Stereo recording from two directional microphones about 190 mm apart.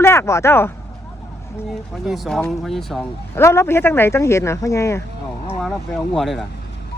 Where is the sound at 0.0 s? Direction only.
15° left (ahead or behind).